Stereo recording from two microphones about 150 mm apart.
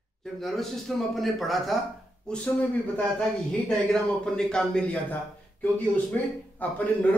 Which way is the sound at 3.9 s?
5° left (ahead or behind).